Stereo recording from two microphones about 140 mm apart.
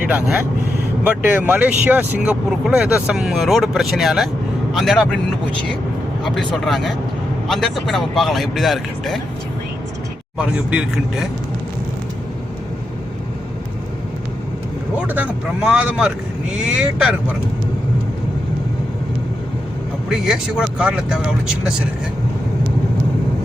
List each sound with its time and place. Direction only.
1.0 s speech: 10° right (ahead or behind)
6.2 s speech: centre (ahead or behind)
10.3 s speech: 10° right (ahead or behind)
14.9 s speech: 10° right (ahead or behind)
20.1 s speech: 5° right (ahead or behind)